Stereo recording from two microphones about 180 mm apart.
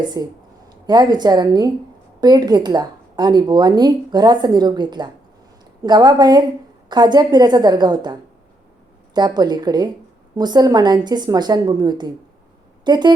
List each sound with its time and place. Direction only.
0.2 s a woman's voice: 20° right (ahead or behind)
9.1 s a woman's voice: 25° right (ahead or behind)